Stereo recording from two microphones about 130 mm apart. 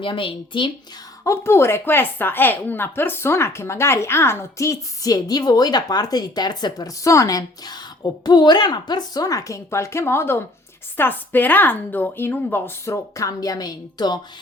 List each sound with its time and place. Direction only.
0.0 s speech: 40° left (ahead or behind)
1.2 s a woman's voice: 20° left (ahead or behind)